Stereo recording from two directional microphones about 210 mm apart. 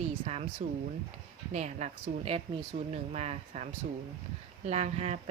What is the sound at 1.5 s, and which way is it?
Speech, 35° right (ahead or behind).